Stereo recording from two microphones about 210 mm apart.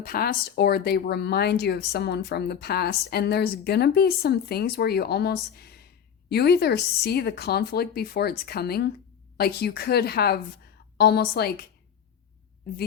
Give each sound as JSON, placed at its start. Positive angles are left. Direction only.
{"t": 0.0, "sound": "speech", "side_deg": 45}